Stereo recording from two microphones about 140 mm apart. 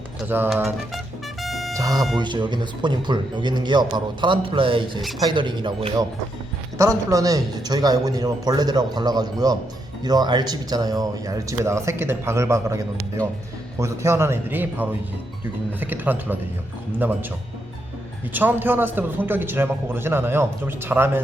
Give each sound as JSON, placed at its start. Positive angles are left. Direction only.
{"t": 0.3, "sound": "a man's voice", "side_deg": -15}
{"t": 0.5, "sound": "music", "side_deg": 0}
{"t": 1.7, "sound": "a man's voice", "side_deg": -25}
{"t": 6.7, "sound": "a man's voice", "side_deg": -25}
{"t": 18.3, "sound": "a man's voice", "side_deg": -15}